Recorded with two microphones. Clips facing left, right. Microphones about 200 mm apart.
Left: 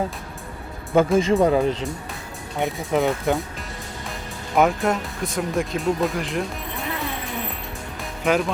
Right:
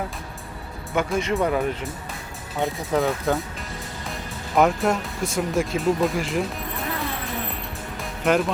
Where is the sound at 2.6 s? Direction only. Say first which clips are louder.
Left 1 dB; 15° left (ahead or behind).